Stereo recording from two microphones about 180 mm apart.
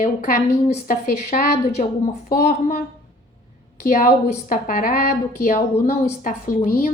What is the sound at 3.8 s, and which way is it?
A woman's voice, 45° left (ahead or behind).